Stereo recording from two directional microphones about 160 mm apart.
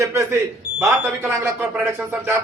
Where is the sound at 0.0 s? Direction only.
20° right (ahead or behind).